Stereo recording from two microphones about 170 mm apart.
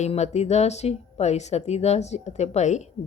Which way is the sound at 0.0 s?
40° left (ahead or behind).